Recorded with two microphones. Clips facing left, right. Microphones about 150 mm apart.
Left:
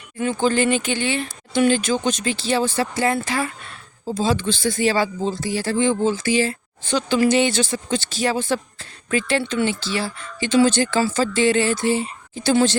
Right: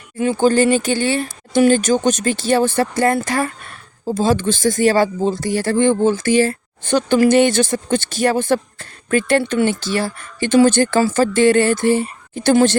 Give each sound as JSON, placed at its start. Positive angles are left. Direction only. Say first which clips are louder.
{"t": 0.2, "sound": "speech", "louder": "right 5 dB", "side_deg": -35}